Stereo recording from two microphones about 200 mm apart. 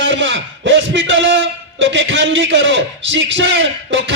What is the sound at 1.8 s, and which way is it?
A man's voice, 70° right (ahead or behind).